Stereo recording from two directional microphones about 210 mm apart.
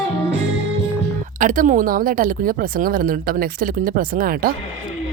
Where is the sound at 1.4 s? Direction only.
40° right (ahead or behind).